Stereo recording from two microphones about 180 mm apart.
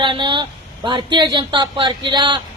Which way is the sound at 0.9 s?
25° right (ahead or behind).